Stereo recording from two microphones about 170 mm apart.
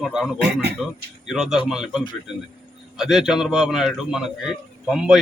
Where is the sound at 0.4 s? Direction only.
80° right.